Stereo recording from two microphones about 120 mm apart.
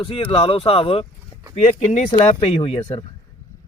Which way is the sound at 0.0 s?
45° left (ahead or behind).